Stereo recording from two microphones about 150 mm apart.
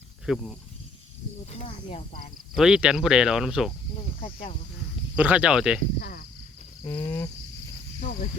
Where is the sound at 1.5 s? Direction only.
40° left (ahead or behind).